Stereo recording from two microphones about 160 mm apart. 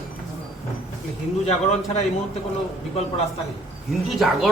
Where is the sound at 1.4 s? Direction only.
40° left (ahead or behind).